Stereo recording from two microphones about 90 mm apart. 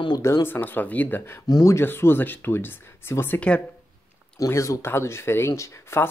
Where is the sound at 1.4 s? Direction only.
45° left (ahead or behind).